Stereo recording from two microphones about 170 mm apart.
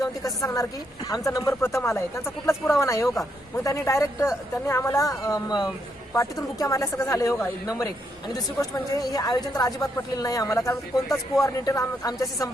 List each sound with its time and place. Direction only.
0.0 s a woman's voice: 20° left (ahead or behind)